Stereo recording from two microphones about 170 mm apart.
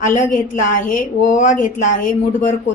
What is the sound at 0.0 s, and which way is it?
Speech, 50° left (ahead or behind).